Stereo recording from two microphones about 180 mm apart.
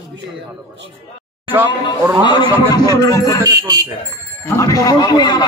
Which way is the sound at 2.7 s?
20° left (ahead or behind).